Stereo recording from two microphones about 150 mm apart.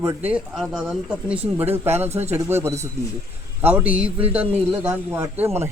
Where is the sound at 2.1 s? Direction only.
45° right (ahead or behind).